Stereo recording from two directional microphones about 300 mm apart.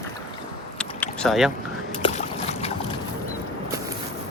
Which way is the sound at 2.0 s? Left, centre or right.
Centre.